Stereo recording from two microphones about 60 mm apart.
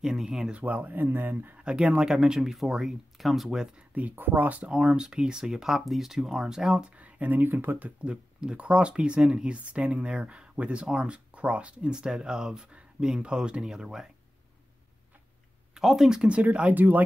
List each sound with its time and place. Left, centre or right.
0.0 s speech: centre
0.6 s speech: right
1.6 s speech: centre
4.1 s speech: right
4.7 s speech: centre
7.0 s speech: right
8.0 s speech: centre
15.7 s speech: centre; by 17.0 s right